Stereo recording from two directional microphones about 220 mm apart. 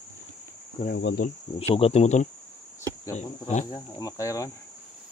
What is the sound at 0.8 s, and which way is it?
Cricket, 45° left (ahead or behind).